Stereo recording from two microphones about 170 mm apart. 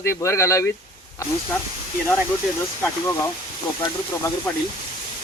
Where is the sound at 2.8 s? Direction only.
15° left (ahead or behind).